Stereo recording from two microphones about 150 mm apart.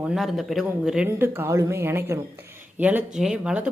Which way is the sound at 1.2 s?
15° right (ahead or behind).